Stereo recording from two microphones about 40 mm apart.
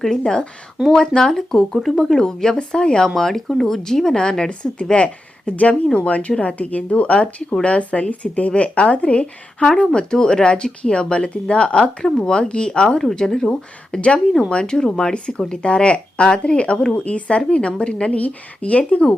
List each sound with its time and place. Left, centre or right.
0.0 s speech: centre
13.1 s speech: centre
13.5 s speech: left